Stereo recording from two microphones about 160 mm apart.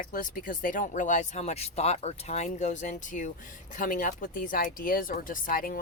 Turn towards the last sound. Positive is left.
turn(degrees=60)  # may be behind; listen again after turning